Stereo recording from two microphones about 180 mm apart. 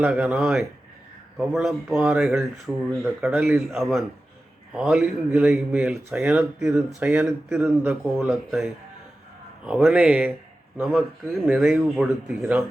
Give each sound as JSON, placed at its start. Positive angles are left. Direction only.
{"t": 0.0, "sound": "speech", "side_deg": -5}
{"t": 7.9, "sound": "speech", "side_deg": 0}